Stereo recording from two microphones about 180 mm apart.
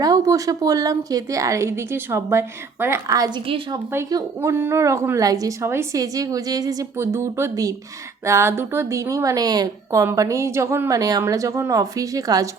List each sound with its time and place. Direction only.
0.0 s speech: 20° right (ahead or behind)
3.9 s a woman's voice: 15° right (ahead or behind)